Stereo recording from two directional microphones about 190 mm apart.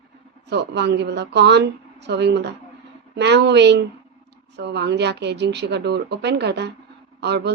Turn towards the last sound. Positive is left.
turn(degrees=-60)  # may be behind; listen again after turning